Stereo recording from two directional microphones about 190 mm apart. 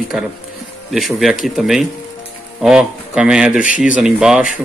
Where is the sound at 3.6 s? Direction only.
45° left (ahead or behind).